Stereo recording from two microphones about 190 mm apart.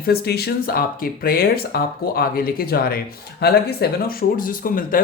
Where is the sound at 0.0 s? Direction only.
55° left (ahead or behind).